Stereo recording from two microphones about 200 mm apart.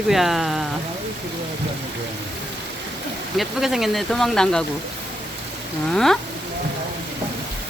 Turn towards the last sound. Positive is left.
turn(degrees=5)  # may be behind; listen again after turning